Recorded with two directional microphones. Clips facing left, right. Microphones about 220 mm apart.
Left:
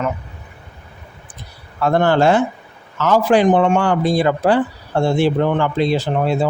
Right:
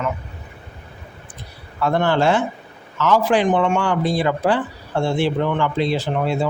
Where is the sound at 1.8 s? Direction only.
45° left (ahead or behind).